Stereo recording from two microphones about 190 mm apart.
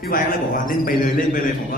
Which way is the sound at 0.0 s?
50° left (ahead or behind).